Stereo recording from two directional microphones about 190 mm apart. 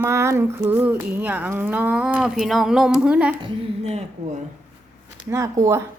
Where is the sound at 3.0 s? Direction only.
5° right (ahead or behind).